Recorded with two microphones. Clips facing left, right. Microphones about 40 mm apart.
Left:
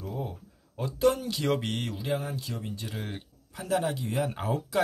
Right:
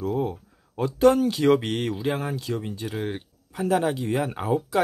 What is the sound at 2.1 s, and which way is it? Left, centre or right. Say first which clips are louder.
Speech: right 5 dB; right.